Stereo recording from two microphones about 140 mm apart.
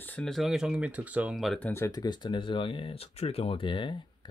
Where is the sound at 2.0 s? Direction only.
30° left (ahead or behind).